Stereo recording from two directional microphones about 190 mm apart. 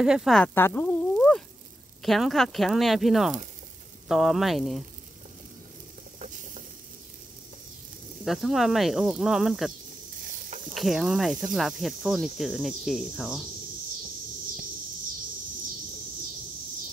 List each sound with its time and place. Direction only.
0.0 s speech: centre (ahead or behind)
6.1 s snake: 40° right (ahead or behind)
8.3 s speech: centre (ahead or behind)
10.7 s speech: centre (ahead or behind)